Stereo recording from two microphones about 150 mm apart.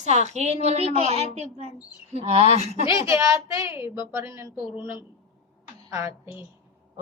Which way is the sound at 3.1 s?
20° right (ahead or behind).